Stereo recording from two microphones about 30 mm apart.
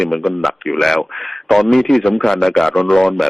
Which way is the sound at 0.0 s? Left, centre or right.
Centre.